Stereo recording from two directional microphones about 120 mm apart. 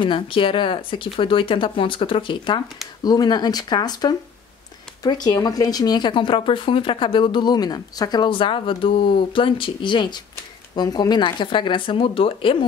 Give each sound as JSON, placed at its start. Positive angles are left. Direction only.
{"t": 0.0, "sound": "speech", "side_deg": 45}